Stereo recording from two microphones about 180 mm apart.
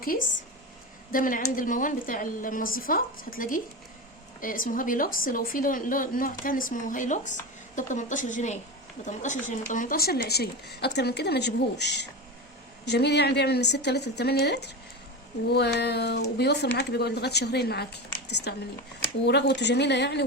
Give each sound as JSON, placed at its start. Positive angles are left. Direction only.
{"t": 0.0, "sound": "a woman's voice", "side_deg": 50}